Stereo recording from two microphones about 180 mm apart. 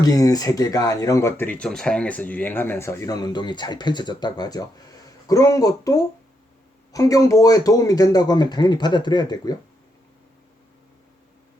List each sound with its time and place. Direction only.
0.0 s speech: 20° left (ahead or behind)